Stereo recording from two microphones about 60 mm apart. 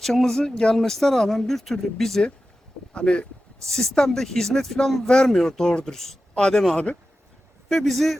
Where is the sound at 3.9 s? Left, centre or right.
Centre.